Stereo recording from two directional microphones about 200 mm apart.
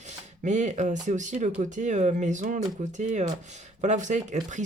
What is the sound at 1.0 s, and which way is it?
Speech, 40° right (ahead or behind).